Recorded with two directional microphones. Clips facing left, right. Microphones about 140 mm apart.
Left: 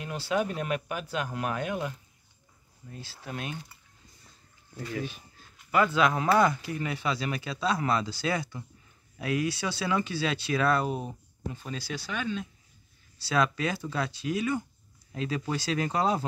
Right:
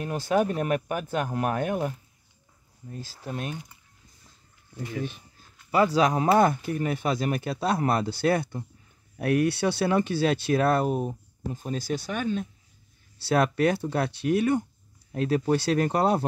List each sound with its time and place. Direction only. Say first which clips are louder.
0.0 s speech: right 5 dB; 45° right (ahead or behind)
3.2 s speech: right 3 dB; centre (ahead or behind)
5.7 s speech: right 3 dB; 35° right (ahead or behind); by 16.3 s 55° right (ahead or behind)